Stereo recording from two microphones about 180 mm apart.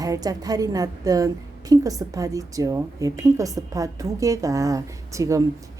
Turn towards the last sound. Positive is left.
turn(degrees=-20)  # may be behind; listen again after turning